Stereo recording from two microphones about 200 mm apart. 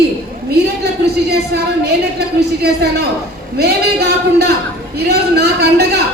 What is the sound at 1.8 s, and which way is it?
A man's voice, 55° right (ahead or behind).